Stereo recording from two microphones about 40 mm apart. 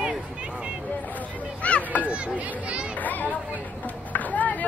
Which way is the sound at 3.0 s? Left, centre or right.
Left.